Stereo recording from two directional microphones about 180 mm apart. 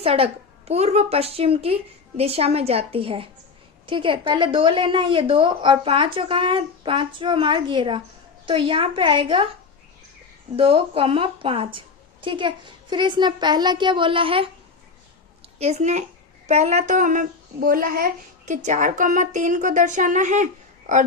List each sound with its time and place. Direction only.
0.0 s a woman's voice: 35° right (ahead or behind)
10.6 s a woman's voice: 30° right (ahead or behind)
15.5 s a woman's voice: 35° right (ahead or behind)